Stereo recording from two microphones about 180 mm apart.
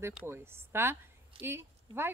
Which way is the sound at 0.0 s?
15° right (ahead or behind).